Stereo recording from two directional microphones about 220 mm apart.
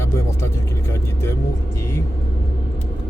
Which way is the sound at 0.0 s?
10° left (ahead or behind).